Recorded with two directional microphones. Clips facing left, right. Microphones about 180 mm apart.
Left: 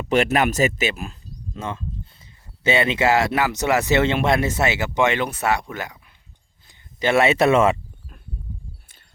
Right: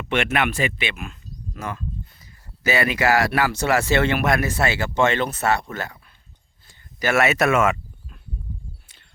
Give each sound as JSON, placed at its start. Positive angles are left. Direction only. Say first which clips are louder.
{"t": 0.1, "sound": "speech", "louder": "left 4 dB", "side_deg": 40}
{"t": 6.7, "sound": "speech", "louder": "left 2 dB", "side_deg": 25}